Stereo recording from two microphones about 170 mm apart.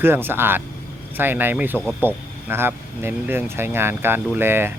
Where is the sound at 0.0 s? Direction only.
10° right (ahead or behind).